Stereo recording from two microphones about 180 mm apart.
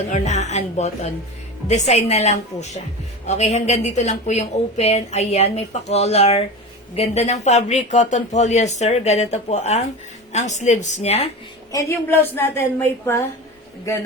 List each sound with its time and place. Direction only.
0.1 s speech: 40° left (ahead or behind)
11.7 s a woman's voice: 15° left (ahead or behind)